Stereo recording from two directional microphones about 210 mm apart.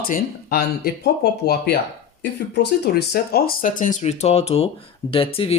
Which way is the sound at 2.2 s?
55° left (ahead or behind).